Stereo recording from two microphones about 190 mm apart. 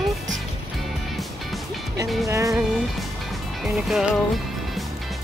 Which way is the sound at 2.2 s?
15° right (ahead or behind).